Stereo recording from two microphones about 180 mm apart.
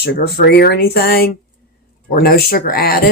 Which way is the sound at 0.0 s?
65° left (ahead or behind).